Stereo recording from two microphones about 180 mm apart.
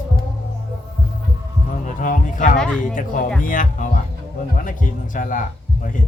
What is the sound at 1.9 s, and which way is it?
Speech, 45° left (ahead or behind).